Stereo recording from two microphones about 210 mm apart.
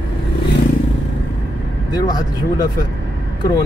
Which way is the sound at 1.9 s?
20° left (ahead or behind).